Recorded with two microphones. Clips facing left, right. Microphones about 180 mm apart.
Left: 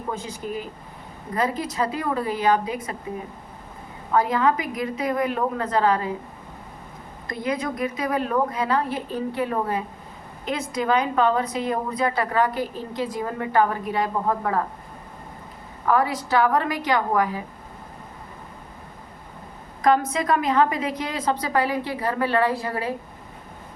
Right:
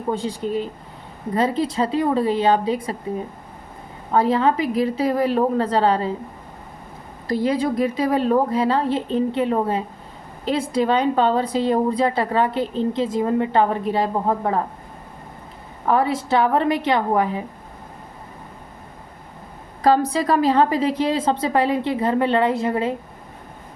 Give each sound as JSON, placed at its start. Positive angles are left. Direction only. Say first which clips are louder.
{"t": 0.1, "sound": "a woman's voice", "louder": "right 7 dB", "side_deg": -30}
{"t": 4.1, "sound": "a woman's voice", "louder": "right 3 dB", "side_deg": -30}
{"t": 7.3, "sound": "a woman's voice", "louder": "right 7 dB", "side_deg": -30}
{"t": 15.9, "sound": "a woman's voice", "louder": "right 2 dB", "side_deg": -25}
{"t": 19.8, "sound": "a woman's voice", "louder": "right 3 dB", "side_deg": -35}